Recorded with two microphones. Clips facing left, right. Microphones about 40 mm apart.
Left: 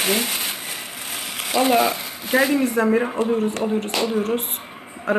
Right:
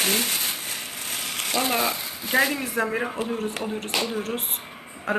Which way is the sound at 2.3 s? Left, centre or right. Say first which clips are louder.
Left 5 dB; centre.